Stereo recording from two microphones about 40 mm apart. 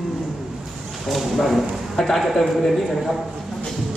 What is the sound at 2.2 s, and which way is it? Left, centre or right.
Speech, centre.